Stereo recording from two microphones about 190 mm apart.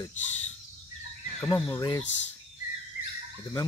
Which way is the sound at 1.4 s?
20° left (ahead or behind).